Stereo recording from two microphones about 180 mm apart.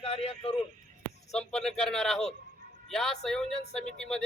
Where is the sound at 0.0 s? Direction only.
35° left (ahead or behind).